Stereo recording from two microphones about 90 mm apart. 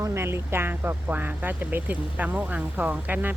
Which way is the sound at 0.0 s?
30° right (ahead or behind).